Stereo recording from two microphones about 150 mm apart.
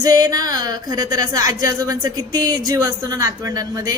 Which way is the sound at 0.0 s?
25° right (ahead or behind).